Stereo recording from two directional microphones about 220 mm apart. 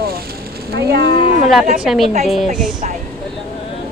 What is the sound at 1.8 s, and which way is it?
Speech, centre (ahead or behind).